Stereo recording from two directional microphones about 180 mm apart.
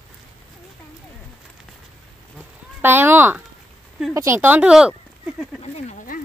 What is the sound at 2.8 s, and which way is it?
Speech, 10° right (ahead or behind).